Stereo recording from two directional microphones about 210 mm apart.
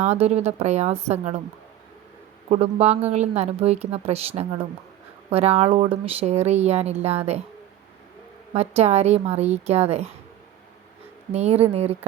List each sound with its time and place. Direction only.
0.0 s a woman's voice: 30° right (ahead or behind)
2.5 s speech: 30° right (ahead or behind)
8.5 s speech: 30° right (ahead or behind)
11.3 s speech: 30° right (ahead or behind)